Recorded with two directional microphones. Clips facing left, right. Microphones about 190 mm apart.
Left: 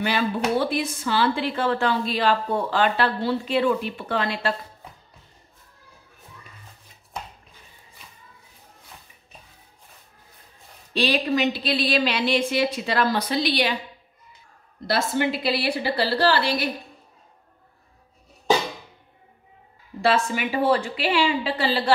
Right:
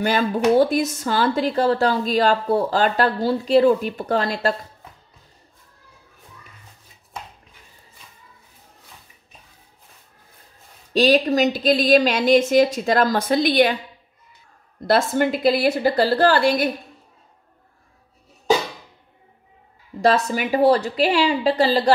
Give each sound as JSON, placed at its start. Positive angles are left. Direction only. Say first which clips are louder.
{"t": 0.0, "sound": "speech", "louder": "right 5 dB", "side_deg": -45}
{"t": 10.9, "sound": "a woman's voice", "louder": "right 6 dB", "side_deg": -45}
{"t": 14.9, "sound": "a woman's voice", "louder": "right 5 dB", "side_deg": -50}
{"t": 20.0, "sound": "speech", "louder": "right 3 dB", "side_deg": -40}